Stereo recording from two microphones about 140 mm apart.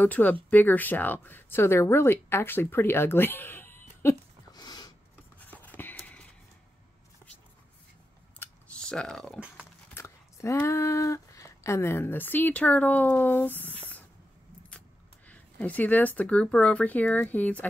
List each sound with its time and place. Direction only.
0.0 s speech: 10° left (ahead or behind)
4.6 s a sound: 30° left (ahead or behind)
5.4 s a sound: 10° left (ahead or behind)
8.4 s scissors: 5° left (ahead or behind)
9.9 s speech: 20° left (ahead or behind)
15.2 s speech: 10° left (ahead or behind)